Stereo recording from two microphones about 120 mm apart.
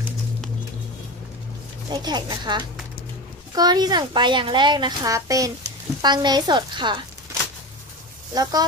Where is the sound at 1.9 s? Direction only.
35° right (ahead or behind).